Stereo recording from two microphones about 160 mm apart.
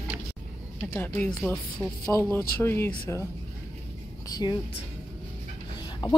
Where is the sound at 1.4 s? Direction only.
Centre (ahead or behind).